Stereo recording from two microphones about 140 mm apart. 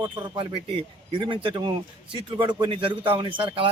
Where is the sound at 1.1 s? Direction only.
35° right (ahead or behind).